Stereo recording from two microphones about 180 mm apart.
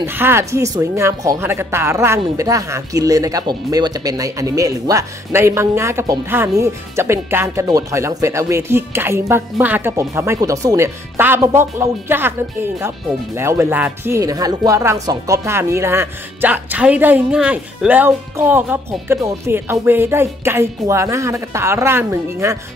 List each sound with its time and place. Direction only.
0.0 s speech: 15° right (ahead or behind)